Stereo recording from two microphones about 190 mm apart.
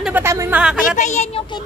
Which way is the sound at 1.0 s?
40° left (ahead or behind).